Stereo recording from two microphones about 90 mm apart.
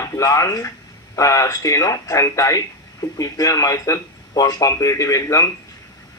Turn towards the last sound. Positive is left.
turn(degrees=35)  # may be behind; listen again after turning